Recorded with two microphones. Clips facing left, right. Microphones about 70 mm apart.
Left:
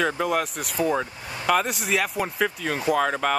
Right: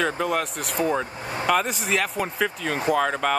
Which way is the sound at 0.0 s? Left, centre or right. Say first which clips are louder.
Even; centre.